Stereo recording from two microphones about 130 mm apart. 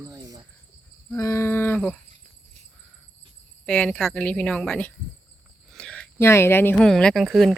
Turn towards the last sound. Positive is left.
turn(degrees=0)  # may be behind; listen again after turning